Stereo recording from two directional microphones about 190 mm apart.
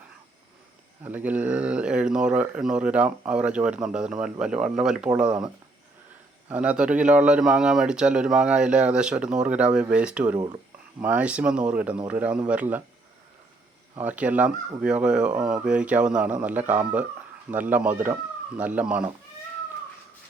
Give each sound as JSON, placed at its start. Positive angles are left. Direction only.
{"t": 1.0, "sound": "speech", "side_deg": -10}
{"t": 6.5, "sound": "speech", "side_deg": -5}
{"t": 10.3, "sound": "speech", "side_deg": -20}
{"t": 11.0, "sound": "speech", "side_deg": -5}
{"t": 13.9, "sound": "speech", "side_deg": -10}